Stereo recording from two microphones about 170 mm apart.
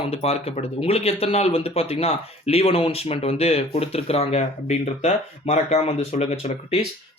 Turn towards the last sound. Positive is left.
turn(degrees=40)  # may be behind; listen again after turning